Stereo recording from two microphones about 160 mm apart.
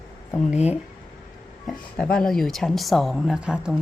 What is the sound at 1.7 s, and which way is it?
Speech, 5° left (ahead or behind).